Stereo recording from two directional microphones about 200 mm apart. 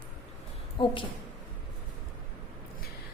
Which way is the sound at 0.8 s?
25° left (ahead or behind).